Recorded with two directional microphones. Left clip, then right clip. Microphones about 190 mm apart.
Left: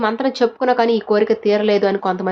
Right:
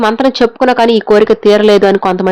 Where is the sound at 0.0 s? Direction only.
40° right (ahead or behind).